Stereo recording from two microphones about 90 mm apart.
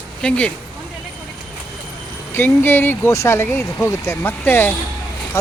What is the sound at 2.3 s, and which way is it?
Speech, 25° left (ahead or behind).